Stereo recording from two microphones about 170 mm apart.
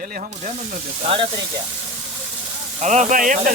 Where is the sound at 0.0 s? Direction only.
60° right (ahead or behind).